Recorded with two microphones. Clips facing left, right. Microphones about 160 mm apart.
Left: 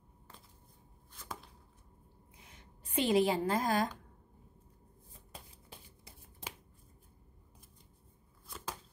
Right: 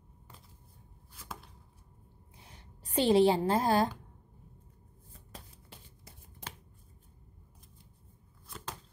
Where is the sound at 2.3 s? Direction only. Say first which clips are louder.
Right 3 dB; 30° right (ahead or behind).